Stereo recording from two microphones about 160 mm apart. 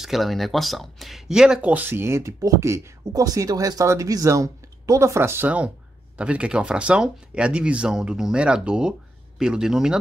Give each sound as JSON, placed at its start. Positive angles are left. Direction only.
{"t": 0.0, "sound": "a man's voice", "side_deg": 0}